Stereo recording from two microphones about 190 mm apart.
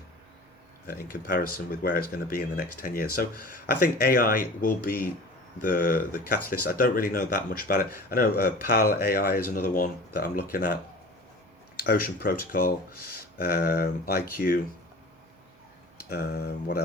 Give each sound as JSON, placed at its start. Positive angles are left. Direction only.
{"t": 0.9, "sound": "speech", "side_deg": 50}
{"t": 11.8, "sound": "speech", "side_deg": 50}
{"t": 16.0, "sound": "speech", "side_deg": 55}